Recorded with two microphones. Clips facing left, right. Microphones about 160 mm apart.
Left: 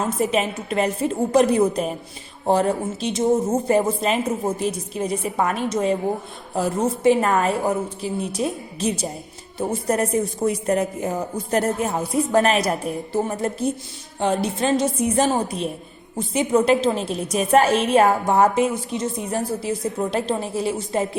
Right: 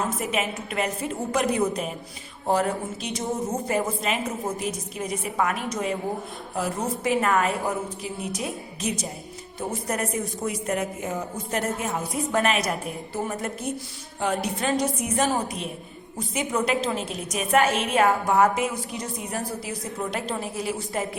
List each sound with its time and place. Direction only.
0.2 s a woman's voice: 30° left (ahead or behind)